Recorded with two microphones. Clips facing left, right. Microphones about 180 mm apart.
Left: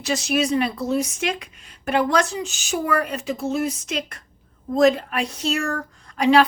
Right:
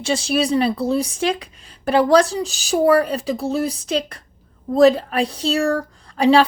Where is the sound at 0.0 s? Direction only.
30° right (ahead or behind).